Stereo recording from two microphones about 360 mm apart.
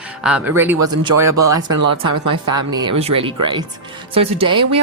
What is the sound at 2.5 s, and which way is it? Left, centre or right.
A woman's voice, centre.